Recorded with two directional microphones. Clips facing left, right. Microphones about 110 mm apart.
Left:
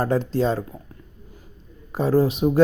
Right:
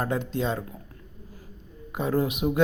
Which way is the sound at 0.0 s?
35° left (ahead or behind).